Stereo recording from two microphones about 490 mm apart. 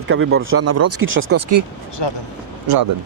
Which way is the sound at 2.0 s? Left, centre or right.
Left.